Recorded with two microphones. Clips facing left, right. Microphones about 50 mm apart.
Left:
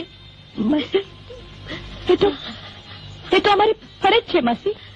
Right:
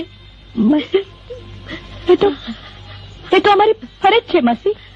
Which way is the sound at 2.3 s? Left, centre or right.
Centre.